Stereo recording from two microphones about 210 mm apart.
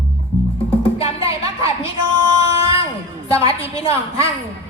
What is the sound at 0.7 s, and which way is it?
Music, 25° left (ahead or behind).